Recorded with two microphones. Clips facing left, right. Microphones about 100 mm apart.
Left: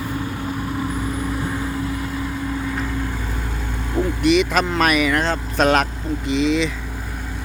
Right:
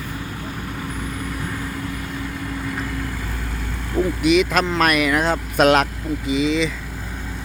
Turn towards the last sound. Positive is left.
turn(degrees=0)  # may be behind; listen again after turning